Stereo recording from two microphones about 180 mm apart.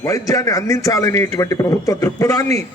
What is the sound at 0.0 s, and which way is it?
A man's voice, 20° left (ahead or behind).